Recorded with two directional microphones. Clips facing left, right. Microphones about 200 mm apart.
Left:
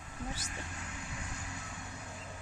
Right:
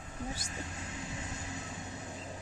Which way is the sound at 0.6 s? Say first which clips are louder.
Right 3 dB; 25° right (ahead or behind).